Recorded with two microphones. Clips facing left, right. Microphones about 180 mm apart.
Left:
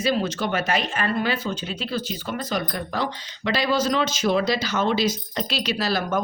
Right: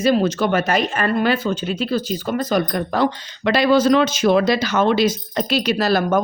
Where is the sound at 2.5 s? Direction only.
55° right (ahead or behind).